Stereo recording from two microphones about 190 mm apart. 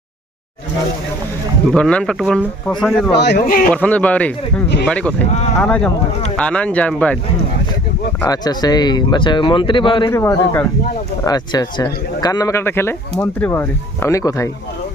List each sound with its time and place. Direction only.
1.7 s speech: 5° left (ahead or behind)
3.2 s speech: 55° left (ahead or behind)
3.7 s a man's voice: 5° left (ahead or behind)
8.2 s speech: 20° left (ahead or behind)
10.1 s a man's voice: 15° left (ahead or behind)